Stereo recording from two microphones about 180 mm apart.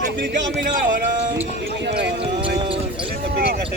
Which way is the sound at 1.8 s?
70° right (ahead or behind).